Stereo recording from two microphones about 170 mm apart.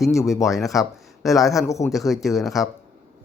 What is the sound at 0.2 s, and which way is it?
Speech, 20° left (ahead or behind).